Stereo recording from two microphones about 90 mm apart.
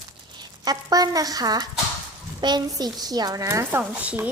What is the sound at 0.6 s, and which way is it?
Speech, 45° right (ahead or behind).